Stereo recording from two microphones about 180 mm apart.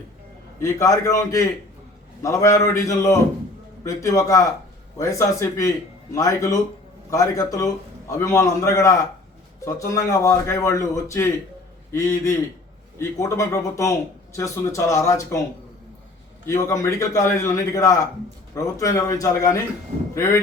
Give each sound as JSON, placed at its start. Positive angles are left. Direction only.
{"t": 0.6, "sound": "a man's voice", "side_deg": 20}
{"t": 16.5, "sound": "a man's voice", "side_deg": 15}